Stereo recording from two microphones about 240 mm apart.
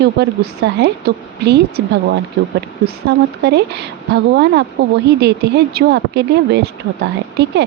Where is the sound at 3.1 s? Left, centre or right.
Right.